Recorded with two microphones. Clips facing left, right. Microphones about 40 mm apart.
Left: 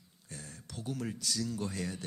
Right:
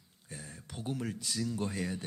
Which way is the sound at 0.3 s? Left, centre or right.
Centre.